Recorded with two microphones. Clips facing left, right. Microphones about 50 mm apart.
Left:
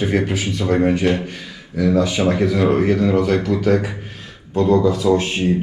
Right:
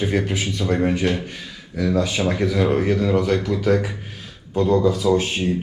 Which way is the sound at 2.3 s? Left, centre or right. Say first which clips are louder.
Left 3 dB; left.